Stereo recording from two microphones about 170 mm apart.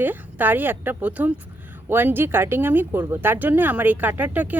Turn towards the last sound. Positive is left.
turn(degrees=-10)  # may be behind; listen again after turning